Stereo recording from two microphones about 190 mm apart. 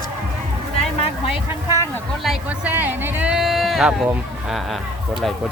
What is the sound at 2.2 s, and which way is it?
Speech, 5° right (ahead or behind).